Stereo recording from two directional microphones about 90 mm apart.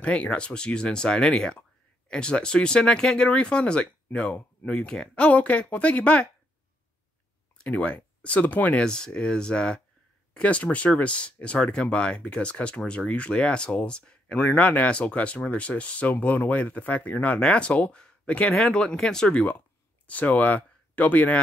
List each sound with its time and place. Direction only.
0.0 s speech: 15° left (ahead or behind)
7.5 s speech: 15° left (ahead or behind)